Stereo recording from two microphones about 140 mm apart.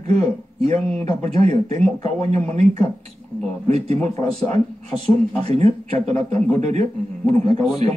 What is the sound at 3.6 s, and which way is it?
Speech, 50° right (ahead or behind).